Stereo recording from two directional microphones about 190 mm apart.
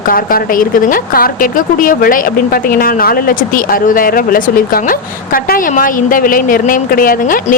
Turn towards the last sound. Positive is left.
turn(degrees=45)  # may be behind; listen again after turning